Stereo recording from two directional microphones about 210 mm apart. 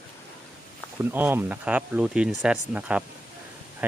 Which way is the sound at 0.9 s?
10° right (ahead or behind).